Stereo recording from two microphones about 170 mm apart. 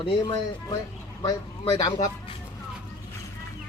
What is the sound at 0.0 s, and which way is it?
Speech, 30° left (ahead or behind).